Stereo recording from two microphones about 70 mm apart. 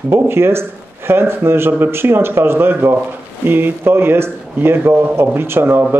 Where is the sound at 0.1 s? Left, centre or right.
Right.